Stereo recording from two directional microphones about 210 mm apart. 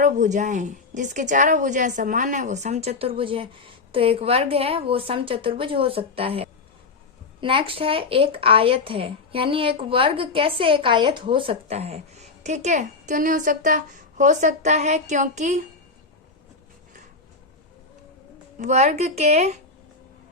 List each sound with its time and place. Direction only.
0.0 s a woman's voice: 35° right (ahead or behind)
18.6 s a woman's voice: 35° right (ahead or behind)